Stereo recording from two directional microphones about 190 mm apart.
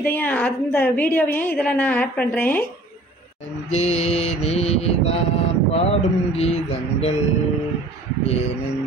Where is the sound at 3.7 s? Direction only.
35° left (ahead or behind).